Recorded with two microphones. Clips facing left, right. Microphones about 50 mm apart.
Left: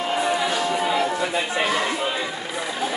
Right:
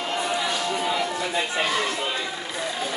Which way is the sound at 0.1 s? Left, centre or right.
Centre.